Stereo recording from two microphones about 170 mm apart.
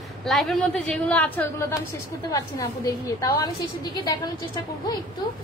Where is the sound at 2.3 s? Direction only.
20° left (ahead or behind).